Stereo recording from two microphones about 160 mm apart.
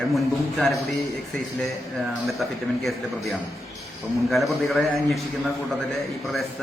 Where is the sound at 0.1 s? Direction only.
Centre (ahead or behind).